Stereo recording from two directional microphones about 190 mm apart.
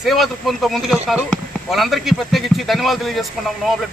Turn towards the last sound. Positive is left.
turn(degrees=0)  # may be behind; listen again after turning